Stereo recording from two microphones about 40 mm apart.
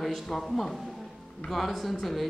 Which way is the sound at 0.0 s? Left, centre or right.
Centre.